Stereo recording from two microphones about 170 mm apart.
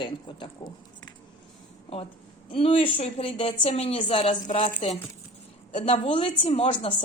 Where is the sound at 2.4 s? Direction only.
30° left (ahead or behind).